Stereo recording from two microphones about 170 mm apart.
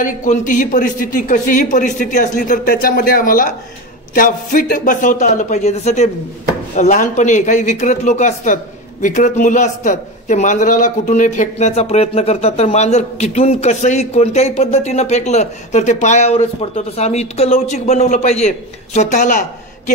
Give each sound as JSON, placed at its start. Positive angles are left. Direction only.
{"t": 0.0, "sound": "a man's voice", "side_deg": 50}